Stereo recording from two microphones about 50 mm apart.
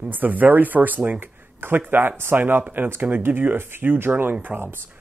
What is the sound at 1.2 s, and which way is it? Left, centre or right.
Speech, right.